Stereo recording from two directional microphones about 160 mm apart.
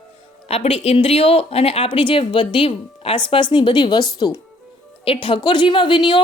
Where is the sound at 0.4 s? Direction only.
40° left (ahead or behind).